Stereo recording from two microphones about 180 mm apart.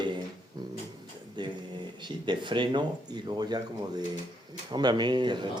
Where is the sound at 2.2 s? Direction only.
25° right (ahead or behind).